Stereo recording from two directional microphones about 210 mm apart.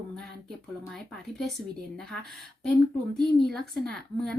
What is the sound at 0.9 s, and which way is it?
Speech, centre (ahead or behind).